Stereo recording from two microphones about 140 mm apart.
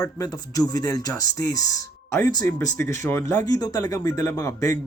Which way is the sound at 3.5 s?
30° left (ahead or behind).